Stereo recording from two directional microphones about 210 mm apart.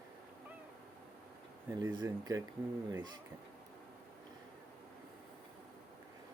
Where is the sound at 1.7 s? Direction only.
20° right (ahead or behind).